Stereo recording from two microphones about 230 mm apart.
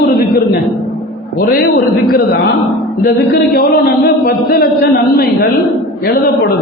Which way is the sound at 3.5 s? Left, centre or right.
Left.